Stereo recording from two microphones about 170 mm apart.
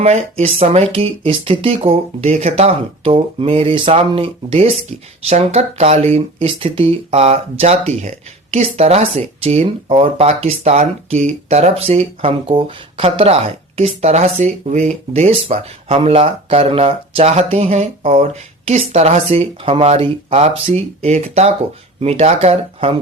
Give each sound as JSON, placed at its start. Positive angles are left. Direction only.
{"t": 0.0, "sound": "speech", "side_deg": -40}